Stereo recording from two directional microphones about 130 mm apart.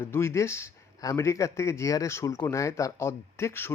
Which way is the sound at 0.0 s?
20° left (ahead or behind).